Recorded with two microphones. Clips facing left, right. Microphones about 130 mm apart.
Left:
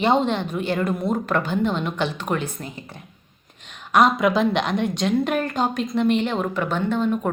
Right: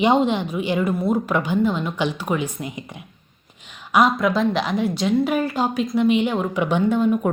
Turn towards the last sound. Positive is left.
turn(degrees=-10)  # may be behind; listen again after turning